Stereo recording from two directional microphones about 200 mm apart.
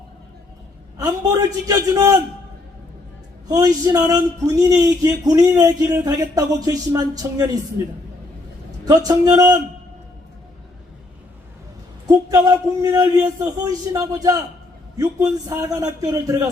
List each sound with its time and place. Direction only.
0.9 s speech: 15° right (ahead or behind)
3.5 s speech: 20° right (ahead or behind)
8.8 s speech: 20° right (ahead or behind)
12.0 s speech: 15° right (ahead or behind)